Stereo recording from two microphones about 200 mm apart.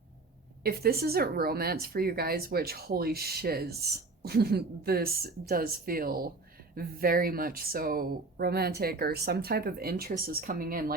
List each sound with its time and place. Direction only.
0.6 s speech: 50° right (ahead or behind)